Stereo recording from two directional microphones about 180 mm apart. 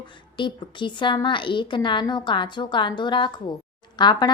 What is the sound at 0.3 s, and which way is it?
A woman's voice, 25° left (ahead or behind).